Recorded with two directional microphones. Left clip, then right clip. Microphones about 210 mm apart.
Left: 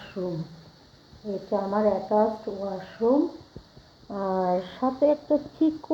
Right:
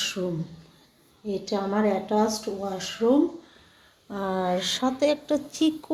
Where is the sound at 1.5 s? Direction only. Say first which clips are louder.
Left 2 dB; 30° right (ahead or behind).